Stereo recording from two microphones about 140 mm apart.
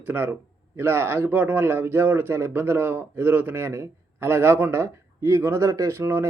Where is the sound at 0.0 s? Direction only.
15° right (ahead or behind).